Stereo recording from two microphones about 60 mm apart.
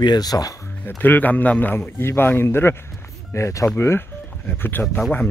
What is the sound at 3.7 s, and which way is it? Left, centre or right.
Speech, left.